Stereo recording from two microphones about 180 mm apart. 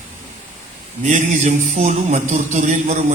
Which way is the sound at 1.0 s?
40° right (ahead or behind).